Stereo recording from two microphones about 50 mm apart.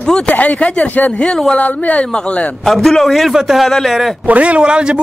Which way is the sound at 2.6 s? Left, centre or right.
Centre.